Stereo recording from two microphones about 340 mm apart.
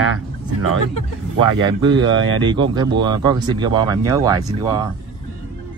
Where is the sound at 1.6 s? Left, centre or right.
Centre.